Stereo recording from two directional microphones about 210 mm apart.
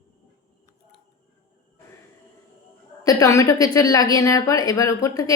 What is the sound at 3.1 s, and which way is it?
A woman's voice, 15° left (ahead or behind).